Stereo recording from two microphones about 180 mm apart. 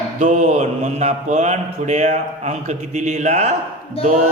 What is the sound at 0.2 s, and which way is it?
Speech, 40° right (ahead or behind).